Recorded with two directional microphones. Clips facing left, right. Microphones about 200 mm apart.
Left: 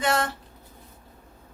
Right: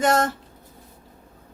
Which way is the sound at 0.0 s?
45° right (ahead or behind).